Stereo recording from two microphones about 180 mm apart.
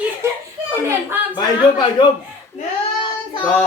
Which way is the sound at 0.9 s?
10° right (ahead or behind).